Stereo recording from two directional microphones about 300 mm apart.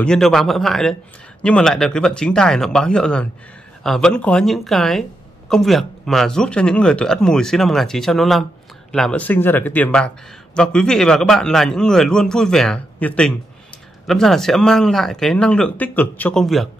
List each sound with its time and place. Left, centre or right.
0.0 s speech: centre